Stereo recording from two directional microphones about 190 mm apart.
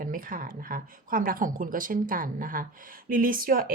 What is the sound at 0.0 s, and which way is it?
A woman's voice, 45° right (ahead or behind).